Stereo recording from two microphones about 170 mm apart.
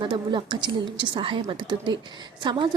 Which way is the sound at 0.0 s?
25° right (ahead or behind).